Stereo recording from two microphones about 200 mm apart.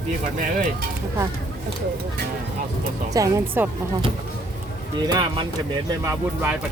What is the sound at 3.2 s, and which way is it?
Speech, 15° right (ahead or behind).